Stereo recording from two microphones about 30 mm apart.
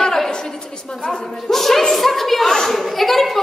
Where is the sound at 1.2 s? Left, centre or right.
Centre.